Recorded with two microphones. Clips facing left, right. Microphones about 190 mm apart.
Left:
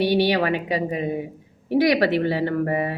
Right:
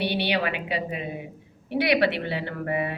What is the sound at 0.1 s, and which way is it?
A woman's voice, 45° left (ahead or behind).